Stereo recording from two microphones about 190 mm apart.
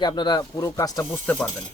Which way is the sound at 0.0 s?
25° left (ahead or behind).